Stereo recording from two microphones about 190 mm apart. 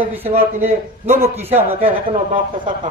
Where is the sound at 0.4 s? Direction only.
10° right (ahead or behind).